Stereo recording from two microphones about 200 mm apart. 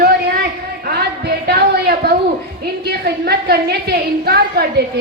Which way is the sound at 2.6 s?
55° right (ahead or behind).